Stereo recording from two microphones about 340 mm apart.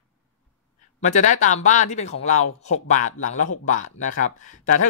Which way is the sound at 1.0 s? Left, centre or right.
Left.